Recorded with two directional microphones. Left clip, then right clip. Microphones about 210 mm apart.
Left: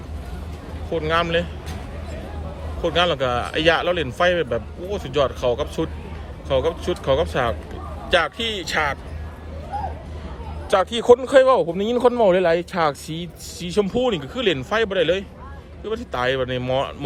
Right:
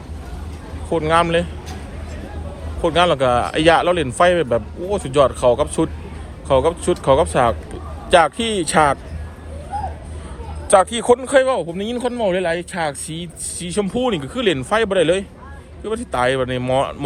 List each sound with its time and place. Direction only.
0.9 s speech: 10° left (ahead or behind)
2.8 s speech: 10° left (ahead or behind)
10.7 s speech: 15° left (ahead or behind)